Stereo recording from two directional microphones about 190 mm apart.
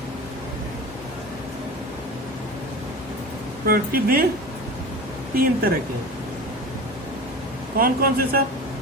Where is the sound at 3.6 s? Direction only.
50° right (ahead or behind).